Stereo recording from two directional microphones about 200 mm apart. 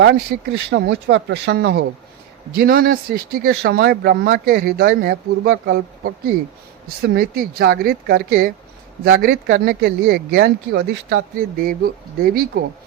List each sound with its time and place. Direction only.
0.0 s speech: 55° right (ahead or behind)